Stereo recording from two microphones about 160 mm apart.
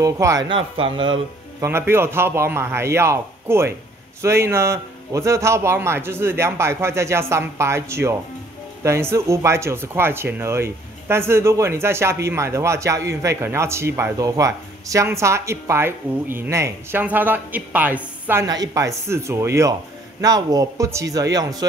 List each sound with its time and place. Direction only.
0.0 s speech: 20° right (ahead or behind)
0.5 s speech: 35° right (ahead or behind)
1.6 s speech: 15° right (ahead or behind)
18.5 s speech: 25° right (ahead or behind)